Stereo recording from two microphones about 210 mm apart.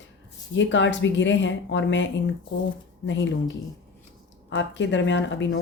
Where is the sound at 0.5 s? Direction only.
60° left (ahead or behind).